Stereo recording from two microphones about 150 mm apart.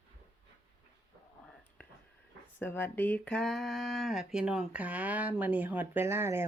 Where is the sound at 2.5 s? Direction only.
10° left (ahead or behind).